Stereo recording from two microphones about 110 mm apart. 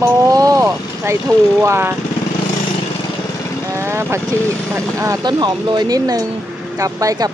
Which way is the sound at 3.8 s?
25° right (ahead or behind).